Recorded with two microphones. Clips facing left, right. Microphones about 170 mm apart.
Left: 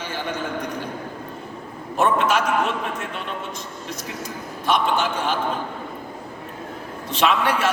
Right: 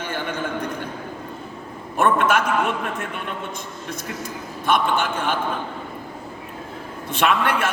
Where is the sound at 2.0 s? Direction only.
55° right (ahead or behind).